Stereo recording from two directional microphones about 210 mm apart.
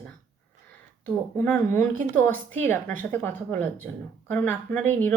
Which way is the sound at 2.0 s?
35° right (ahead or behind).